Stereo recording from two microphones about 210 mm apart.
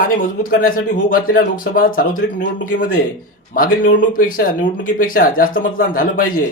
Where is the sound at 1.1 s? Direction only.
40° left (ahead or behind).